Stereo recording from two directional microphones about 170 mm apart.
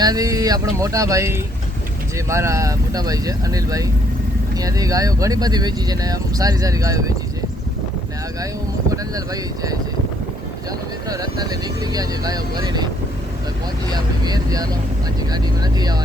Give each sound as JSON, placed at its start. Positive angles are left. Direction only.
{"t": 0.0, "sound": "speech", "side_deg": -20}
{"t": 8.9, "sound": "speech", "side_deg": -20}
{"t": 11.1, "sound": "speech", "side_deg": -20}
{"t": 13.9, "sound": "speech", "side_deg": -25}